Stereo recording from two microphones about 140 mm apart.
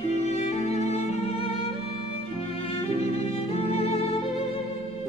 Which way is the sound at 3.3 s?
45° left (ahead or behind).